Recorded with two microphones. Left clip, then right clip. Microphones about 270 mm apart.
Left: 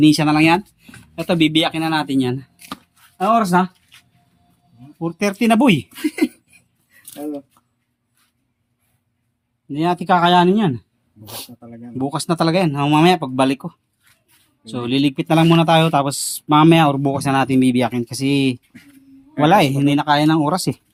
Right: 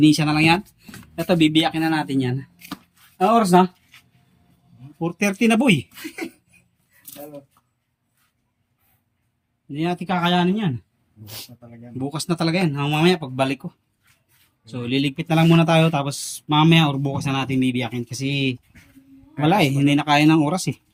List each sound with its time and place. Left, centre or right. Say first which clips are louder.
0.0 s speech: left 3 dB; centre
4.9 s speech: left 2 dB; centre
5.9 s speech: left 11 dB; left
9.7 s speech: left 8 dB; centre
11.9 s speech: left 6 dB; centre
14.7 s speech: left 4 dB; centre